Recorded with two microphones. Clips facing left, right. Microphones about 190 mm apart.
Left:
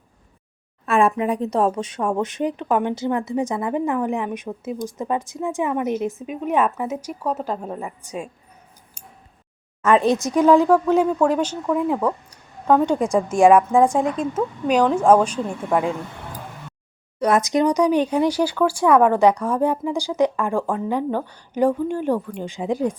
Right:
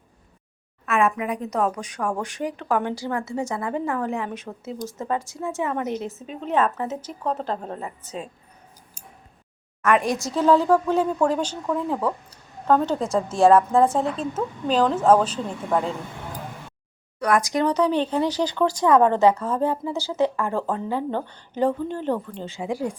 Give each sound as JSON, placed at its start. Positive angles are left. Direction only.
{"t": 0.9, "sound": "a woman's voice", "side_deg": 30}
{"t": 9.8, "sound": "a woman's voice", "side_deg": 25}
{"t": 17.2, "sound": "a woman's voice", "side_deg": 20}